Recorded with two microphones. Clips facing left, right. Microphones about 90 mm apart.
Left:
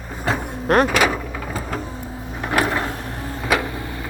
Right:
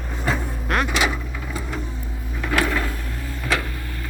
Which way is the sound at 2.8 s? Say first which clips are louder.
Left 3 dB; 40° left (ahead or behind).